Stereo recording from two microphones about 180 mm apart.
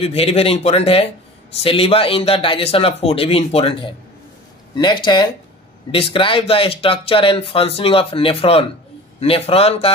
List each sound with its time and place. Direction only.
0.0 s speech: 35° left (ahead or behind)